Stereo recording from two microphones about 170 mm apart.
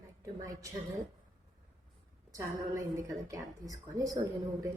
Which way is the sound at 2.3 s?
20° right (ahead or behind).